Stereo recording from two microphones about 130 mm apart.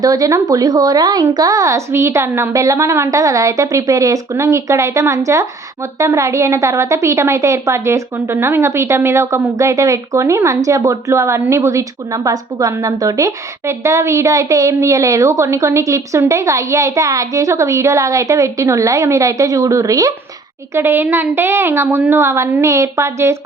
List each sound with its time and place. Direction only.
0.0 s a woman's voice: 30° right (ahead or behind)